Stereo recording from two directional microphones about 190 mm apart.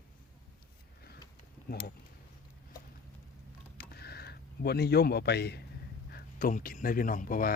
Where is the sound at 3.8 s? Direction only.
55° left (ahead or behind).